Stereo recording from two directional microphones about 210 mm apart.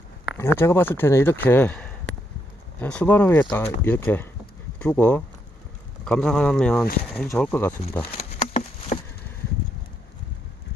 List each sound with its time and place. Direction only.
0.3 s speech: 10° left (ahead or behind)
7.7 s speech: 30° left (ahead or behind)
8.1 s a sound: 30° left (ahead or behind)